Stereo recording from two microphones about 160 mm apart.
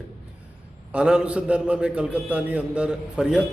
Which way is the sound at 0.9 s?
5° right (ahead or behind).